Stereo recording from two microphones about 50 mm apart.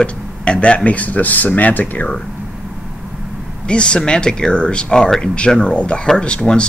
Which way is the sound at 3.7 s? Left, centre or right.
Centre.